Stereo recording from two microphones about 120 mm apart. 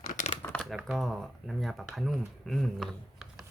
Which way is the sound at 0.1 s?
90° left.